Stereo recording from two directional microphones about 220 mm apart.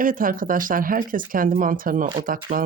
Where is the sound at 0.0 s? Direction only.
40° right (ahead or behind).